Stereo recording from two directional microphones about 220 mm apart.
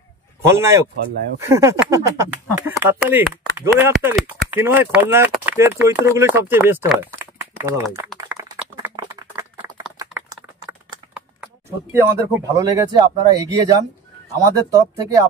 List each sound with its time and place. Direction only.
0.5 s speech: 15° right (ahead or behind)
8.3 s clapping: 5° right (ahead or behind)
8.9 s a sound: 15° right (ahead or behind)
11.1 s speech: 5° right (ahead or behind)